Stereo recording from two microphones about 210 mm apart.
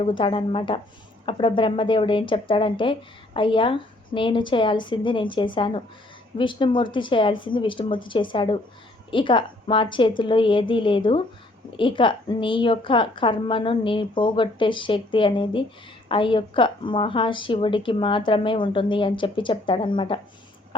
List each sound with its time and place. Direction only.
0.0 s speech: 25° left (ahead or behind)